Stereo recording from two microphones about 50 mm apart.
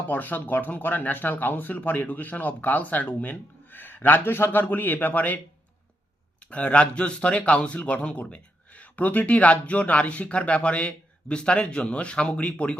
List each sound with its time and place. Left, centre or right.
0.1 s speech: left
6.4 s a man's voice: left